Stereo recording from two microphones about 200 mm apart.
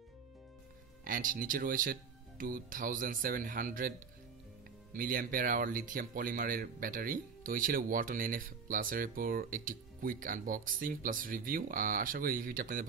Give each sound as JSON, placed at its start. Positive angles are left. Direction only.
{"t": 1.0, "sound": "speech", "side_deg": -45}
{"t": 4.9, "sound": "speech", "side_deg": -45}